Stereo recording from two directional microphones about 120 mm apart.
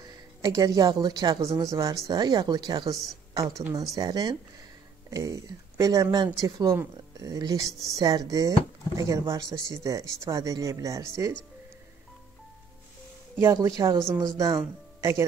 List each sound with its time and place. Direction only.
0.0 s speech: 35° right (ahead or behind)
13.5 s speech: 35° right (ahead or behind)